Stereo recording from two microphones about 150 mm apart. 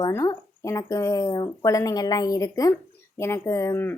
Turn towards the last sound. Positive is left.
turn(degrees=15)  # may be behind; listen again after turning